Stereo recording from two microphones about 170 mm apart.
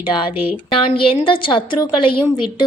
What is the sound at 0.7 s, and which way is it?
A woman's voice, 30° left (ahead or behind).